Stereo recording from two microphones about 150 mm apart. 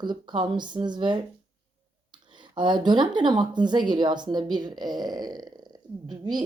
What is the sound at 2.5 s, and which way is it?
Speech, 30° right (ahead or behind).